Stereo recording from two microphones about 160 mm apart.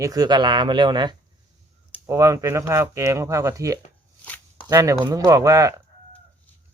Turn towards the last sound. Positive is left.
turn(degrees=-20)  # may be behind; listen again after turning